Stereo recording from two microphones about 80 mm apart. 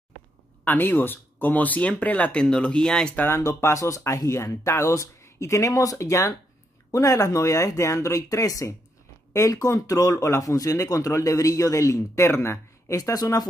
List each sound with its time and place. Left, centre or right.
0.7 s speech: left; by 3.2 s centre
3.2 s speech: left